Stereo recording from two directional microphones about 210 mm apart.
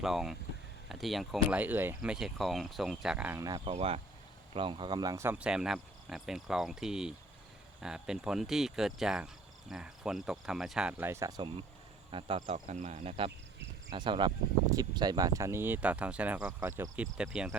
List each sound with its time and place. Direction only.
0.0 s speech: centre (ahead or behind); by 11.5 s 20° right (ahead or behind)
12.1 s insect: 25° right (ahead or behind)
12.5 s insect: 35° right (ahead or behind)
13.9 s speech: 20° right (ahead or behind); by 17.6 s 5° right (ahead or behind)